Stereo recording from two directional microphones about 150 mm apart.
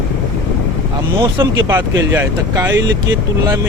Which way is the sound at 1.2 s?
30° right (ahead or behind).